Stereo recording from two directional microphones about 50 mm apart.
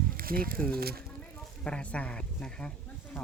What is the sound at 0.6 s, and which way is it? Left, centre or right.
Speech, left.